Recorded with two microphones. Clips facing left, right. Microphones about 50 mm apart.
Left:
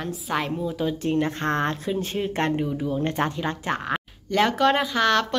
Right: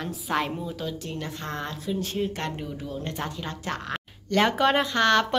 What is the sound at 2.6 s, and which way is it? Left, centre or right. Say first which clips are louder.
Speech: left 8 dB; centre.